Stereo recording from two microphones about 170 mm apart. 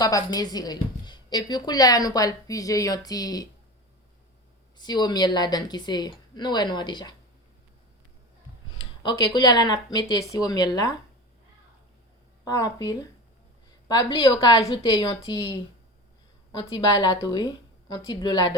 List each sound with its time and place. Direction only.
0.0 s a woman's voice: 20° left (ahead or behind)
4.8 s a woman's voice: 25° left (ahead or behind)
9.0 s a woman's voice: 25° left (ahead or behind)
12.5 s a woman's voice: 20° left (ahead or behind)